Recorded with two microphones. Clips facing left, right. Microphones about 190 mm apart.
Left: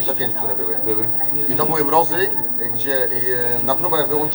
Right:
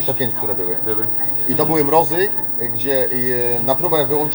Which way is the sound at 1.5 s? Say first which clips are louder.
Right 4 dB; 15° right (ahead or behind).